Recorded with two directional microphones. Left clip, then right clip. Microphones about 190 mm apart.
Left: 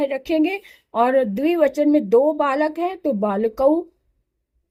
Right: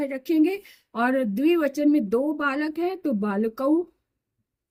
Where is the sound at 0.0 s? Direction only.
30° left (ahead or behind).